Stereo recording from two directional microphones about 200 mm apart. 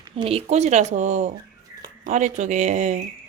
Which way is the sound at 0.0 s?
25° right (ahead or behind).